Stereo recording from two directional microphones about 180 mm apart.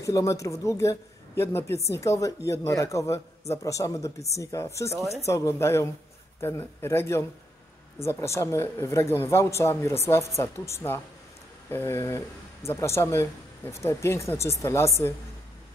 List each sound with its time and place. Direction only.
0.0 s speech: 15° left (ahead or behind)